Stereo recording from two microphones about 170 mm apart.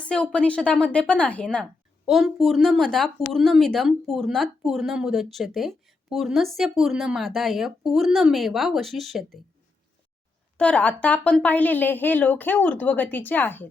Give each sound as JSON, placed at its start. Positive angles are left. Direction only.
{"t": 0.1, "sound": "speech", "side_deg": 5}
{"t": 10.6, "sound": "speech", "side_deg": 5}